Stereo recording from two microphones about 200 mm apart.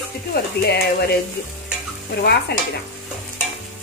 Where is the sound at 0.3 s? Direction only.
50° left (ahead or behind).